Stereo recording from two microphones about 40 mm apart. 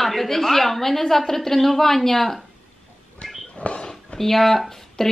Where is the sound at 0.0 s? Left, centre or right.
Centre.